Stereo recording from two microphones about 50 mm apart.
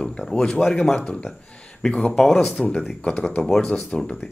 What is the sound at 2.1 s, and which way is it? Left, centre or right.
Speech, centre.